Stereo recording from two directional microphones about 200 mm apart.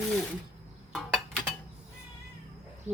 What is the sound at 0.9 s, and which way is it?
Cutlery, centre (ahead or behind).